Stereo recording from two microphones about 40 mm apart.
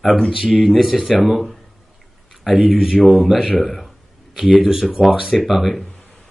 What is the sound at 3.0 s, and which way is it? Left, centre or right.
Speech, centre.